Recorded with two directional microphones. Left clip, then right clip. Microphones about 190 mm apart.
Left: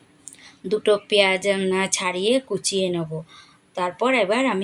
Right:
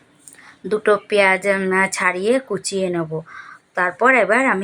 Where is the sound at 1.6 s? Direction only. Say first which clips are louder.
Right 5 dB; 25° right (ahead or behind).